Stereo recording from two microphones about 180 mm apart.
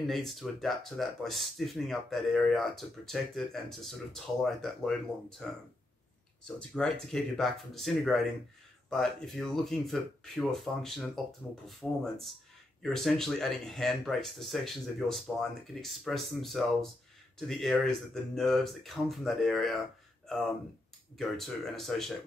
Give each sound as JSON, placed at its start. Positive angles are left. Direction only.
{"t": 0.0, "sound": "speech", "side_deg": 0}
{"t": 6.4, "sound": "speech", "side_deg": 5}
{"t": 21.2, "sound": "speech", "side_deg": 0}